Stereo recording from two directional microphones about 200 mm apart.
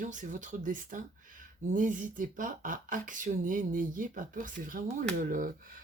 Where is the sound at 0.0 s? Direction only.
40° right (ahead or behind).